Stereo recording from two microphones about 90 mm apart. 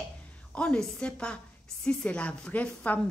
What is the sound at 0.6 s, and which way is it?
A woman's voice, 10° left (ahead or behind).